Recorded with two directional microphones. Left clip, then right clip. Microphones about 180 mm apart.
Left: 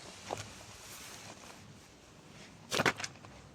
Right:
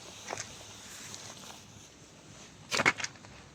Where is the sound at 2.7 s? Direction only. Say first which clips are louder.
Right 4 dB; 50° left (ahead or behind).